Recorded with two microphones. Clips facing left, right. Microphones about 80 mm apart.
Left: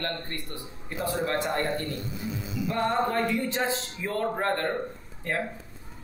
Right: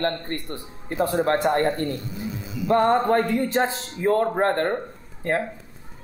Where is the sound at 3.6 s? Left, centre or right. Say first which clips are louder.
Right 7 dB; right.